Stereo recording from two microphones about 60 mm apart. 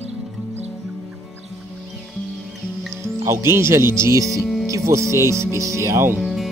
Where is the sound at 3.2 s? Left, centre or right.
Right.